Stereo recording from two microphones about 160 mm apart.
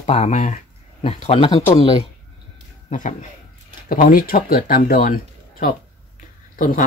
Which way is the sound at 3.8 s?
60° left (ahead or behind).